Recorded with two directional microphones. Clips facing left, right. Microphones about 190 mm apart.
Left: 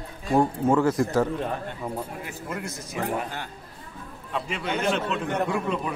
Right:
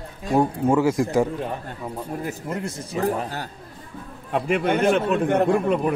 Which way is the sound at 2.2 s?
30° right (ahead or behind).